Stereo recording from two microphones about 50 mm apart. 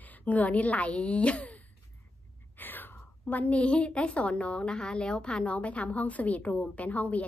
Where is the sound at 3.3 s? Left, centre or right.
Left.